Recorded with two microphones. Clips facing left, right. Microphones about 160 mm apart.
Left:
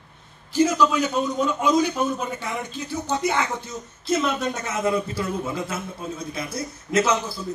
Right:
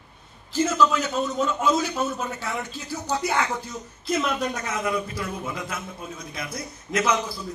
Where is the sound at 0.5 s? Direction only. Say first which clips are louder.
Left 2 dB; 15° left (ahead or behind).